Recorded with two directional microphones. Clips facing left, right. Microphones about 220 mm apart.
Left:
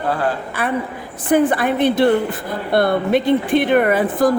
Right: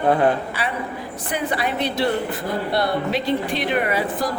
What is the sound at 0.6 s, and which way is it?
A woman's voice, 50° left (ahead or behind).